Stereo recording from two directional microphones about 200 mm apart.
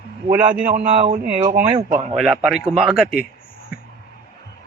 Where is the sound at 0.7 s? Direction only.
35° right (ahead or behind).